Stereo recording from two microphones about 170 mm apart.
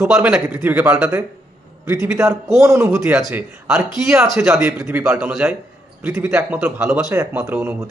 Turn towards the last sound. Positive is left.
turn(degrees=-15)  # may be behind; listen again after turning